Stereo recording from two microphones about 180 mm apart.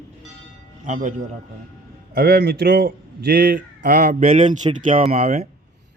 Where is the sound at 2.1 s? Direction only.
60° right (ahead or behind).